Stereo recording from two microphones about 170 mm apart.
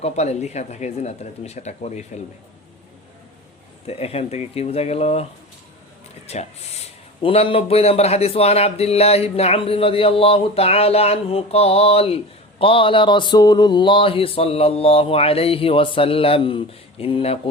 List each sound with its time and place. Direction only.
0.0 s speech: 40° left (ahead or behind)
3.8 s speech: 35° left (ahead or behind)
6.2 s speech: 40° left (ahead or behind)